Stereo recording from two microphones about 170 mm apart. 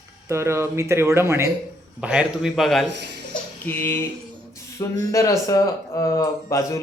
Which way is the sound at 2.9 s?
80° right.